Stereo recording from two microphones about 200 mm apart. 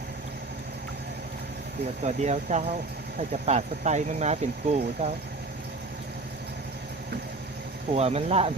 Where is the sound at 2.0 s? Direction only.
35° right (ahead or behind).